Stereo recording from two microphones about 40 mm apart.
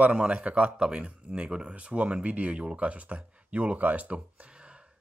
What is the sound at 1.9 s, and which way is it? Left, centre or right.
Speech, right.